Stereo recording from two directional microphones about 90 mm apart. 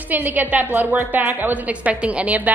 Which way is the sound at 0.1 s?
20° right (ahead or behind).